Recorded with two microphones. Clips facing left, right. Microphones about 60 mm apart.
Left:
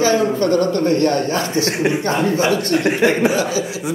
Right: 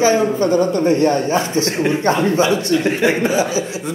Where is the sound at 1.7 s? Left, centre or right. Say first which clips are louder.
Even; centre.